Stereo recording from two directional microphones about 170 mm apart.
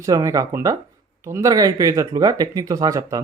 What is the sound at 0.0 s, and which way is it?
Speech, 20° right (ahead or behind).